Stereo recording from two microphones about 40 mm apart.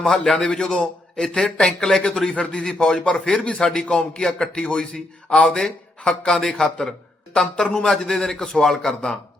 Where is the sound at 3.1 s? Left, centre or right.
Left.